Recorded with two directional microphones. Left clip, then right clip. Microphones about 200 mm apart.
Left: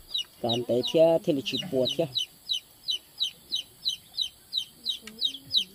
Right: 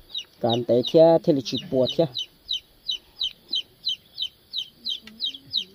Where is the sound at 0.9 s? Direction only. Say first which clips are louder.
Right 5 dB; 35° right (ahead or behind).